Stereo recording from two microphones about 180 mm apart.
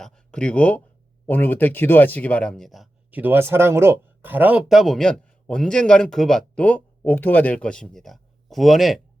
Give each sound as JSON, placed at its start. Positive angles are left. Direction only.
{"t": 0.0, "sound": "speech", "side_deg": 5}